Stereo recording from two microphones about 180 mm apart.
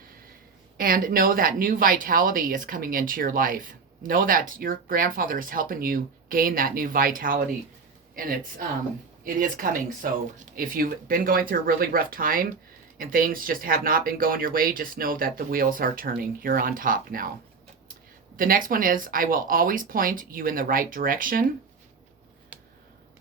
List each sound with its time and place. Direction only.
0.8 s a woman's voice: 50° right (ahead or behind)
18.3 s a woman's voice: 50° right (ahead or behind)
22.5 s a sound: 5° right (ahead or behind)